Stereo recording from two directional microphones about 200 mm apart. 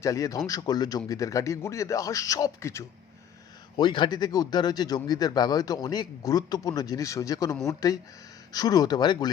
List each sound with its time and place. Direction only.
0.0 s speech: 15° left (ahead or behind)